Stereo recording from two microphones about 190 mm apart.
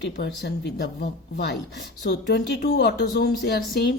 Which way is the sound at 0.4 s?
60° left (ahead or behind).